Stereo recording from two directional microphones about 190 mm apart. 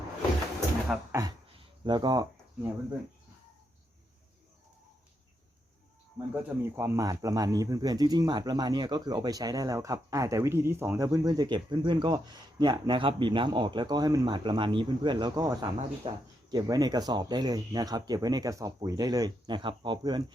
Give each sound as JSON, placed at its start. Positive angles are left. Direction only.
{"t": 0.9, "sound": "speech", "side_deg": -5}
{"t": 1.5, "sound": "a sound", "side_deg": -25}
{"t": 6.1, "sound": "speech", "side_deg": -10}